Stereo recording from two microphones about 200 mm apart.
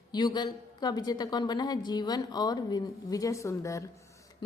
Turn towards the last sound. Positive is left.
turn(degrees=15)  # may be behind; listen again after turning